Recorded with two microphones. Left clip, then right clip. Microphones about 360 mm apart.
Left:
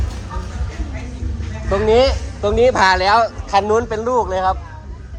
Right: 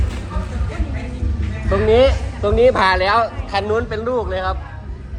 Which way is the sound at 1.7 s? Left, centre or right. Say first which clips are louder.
Even; centre.